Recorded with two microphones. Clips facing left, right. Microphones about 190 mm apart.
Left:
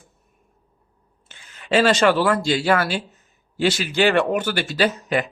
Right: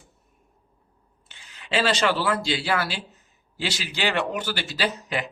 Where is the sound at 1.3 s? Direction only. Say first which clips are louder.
Left 7 dB; 50° left (ahead or behind).